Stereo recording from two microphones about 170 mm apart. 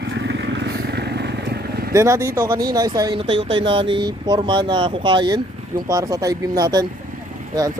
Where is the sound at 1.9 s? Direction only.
15° right (ahead or behind).